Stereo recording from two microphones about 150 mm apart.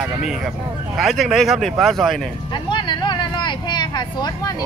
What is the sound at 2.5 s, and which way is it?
Vehicle, 30° left (ahead or behind).